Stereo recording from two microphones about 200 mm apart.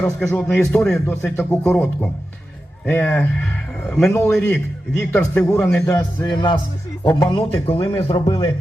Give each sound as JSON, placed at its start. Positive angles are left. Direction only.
{"t": 0.0, "sound": "speech", "side_deg": 5}
{"t": 4.3, "sound": "a man's voice", "side_deg": 5}